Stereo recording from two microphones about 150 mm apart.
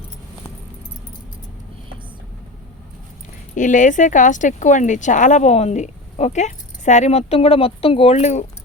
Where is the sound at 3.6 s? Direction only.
60° left (ahead or behind).